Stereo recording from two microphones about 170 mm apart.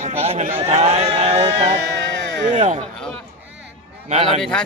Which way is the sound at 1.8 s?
80° right.